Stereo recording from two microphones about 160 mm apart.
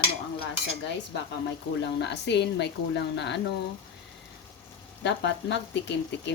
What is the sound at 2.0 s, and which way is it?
Speech, 90° left.